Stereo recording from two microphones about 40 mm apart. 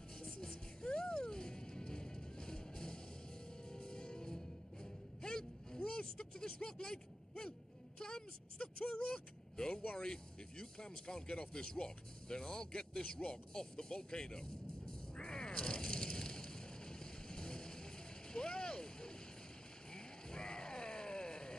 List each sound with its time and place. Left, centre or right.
0.2 s music: centre
5.2 s a sound: centre
8.5 s speech: left
9.0 s speech: centre
14.1 s music: centre
18.3 s vehicle: centre
19.9 s groan: centre